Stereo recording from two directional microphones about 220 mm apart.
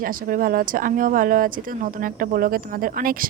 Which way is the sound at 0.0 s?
40° right (ahead or behind).